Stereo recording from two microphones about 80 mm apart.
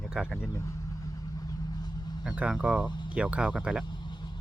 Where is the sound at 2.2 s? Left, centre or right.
Centre.